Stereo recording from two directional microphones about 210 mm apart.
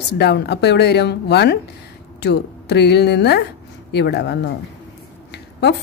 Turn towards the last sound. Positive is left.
turn(degrees=50)  # may be behind; listen again after turning